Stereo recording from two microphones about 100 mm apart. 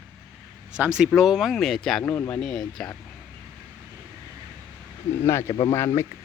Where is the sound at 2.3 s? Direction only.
Centre (ahead or behind).